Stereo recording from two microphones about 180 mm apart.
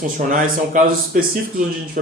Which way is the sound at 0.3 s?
50° right (ahead or behind).